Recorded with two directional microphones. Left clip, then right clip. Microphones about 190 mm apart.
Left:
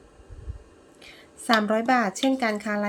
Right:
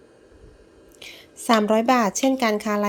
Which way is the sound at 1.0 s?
25° right (ahead or behind).